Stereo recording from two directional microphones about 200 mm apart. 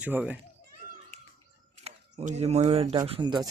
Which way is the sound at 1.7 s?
35° right (ahead or behind).